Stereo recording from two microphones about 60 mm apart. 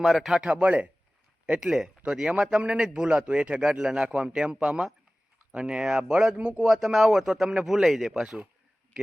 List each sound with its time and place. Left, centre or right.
0.0 s speech: centre
0.4 s speech: right
1.5 s a man's voice: centre
6.7 s a man's voice: centre